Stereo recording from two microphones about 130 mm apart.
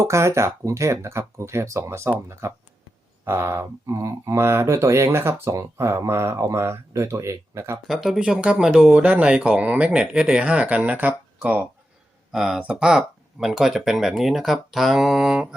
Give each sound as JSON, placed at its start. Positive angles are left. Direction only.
{"t": 0.0, "sound": "speech", "side_deg": -20}
{"t": 7.9, "sound": "speech", "side_deg": 0}